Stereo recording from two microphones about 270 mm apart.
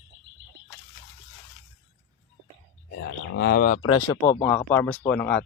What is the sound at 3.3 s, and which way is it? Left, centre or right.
Speech, left.